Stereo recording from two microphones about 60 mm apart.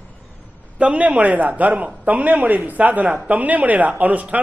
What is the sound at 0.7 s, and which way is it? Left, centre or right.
A man's voice, right.